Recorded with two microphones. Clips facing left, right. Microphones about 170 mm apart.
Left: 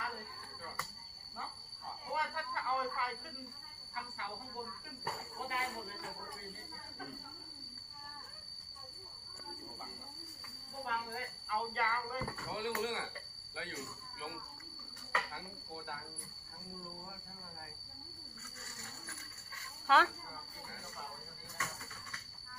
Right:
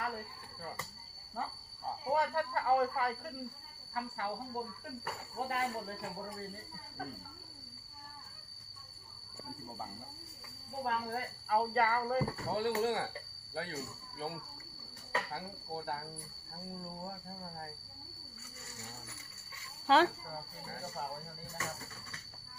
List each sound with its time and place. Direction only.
2.0 s a sound: 50° right (ahead or behind)
3.9 s speech: 50° right (ahead or behind)
10.8 s speech: 50° right (ahead or behind)
15.1 s speech: 45° right (ahead or behind)
19.9 s speech: 30° right (ahead or behind)
20.8 s speech: 45° right (ahead or behind)